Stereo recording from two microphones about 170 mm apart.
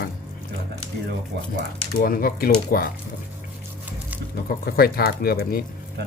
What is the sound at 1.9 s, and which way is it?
Speech, 60° left (ahead or behind).